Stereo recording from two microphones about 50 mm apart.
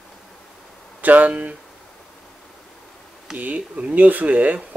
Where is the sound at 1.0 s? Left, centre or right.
Right.